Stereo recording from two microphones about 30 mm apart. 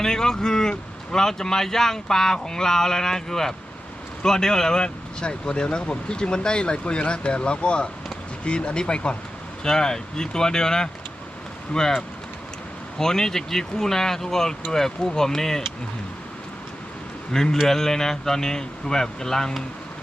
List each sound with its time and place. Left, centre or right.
0.0 s speech: centre; by 9.1 s left
9.6 s speech: left
13.0 s speech: centre
17.3 s speech: centre